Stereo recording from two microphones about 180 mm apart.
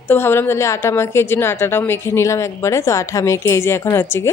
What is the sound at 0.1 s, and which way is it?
Speech, 10° left (ahead or behind).